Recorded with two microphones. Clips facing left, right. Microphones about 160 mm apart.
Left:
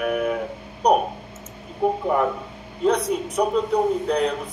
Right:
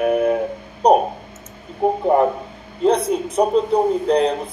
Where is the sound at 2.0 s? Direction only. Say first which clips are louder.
Right 5 dB; 35° right (ahead or behind).